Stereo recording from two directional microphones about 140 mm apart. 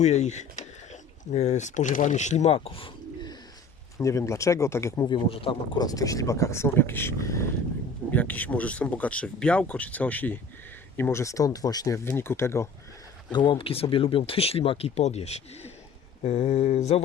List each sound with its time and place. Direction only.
0.0 s speech: 55° left (ahead or behind)
2.6 s bird: 40° left (ahead or behind)
3.9 s speech: 20° left (ahead or behind)
13.3 s speech: 35° left (ahead or behind); by 17.0 s 50° left (ahead or behind)